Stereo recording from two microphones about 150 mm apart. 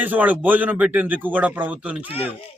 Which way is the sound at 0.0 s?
10° right (ahead or behind).